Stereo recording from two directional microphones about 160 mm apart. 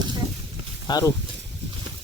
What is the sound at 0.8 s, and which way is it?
Speech, 25° left (ahead or behind).